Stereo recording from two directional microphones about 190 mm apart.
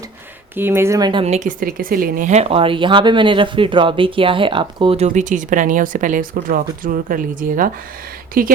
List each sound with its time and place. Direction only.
0.5 s speech: 10° right (ahead or behind)
1.2 s speech: 35° right (ahead or behind)
1.6 s speech: 50° right (ahead or behind)